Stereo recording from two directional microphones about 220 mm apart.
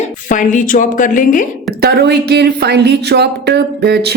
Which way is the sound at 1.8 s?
45° right (ahead or behind).